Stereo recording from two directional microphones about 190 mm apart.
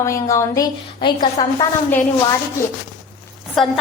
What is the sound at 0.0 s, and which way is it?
A woman's voice, 15° left (ahead or behind).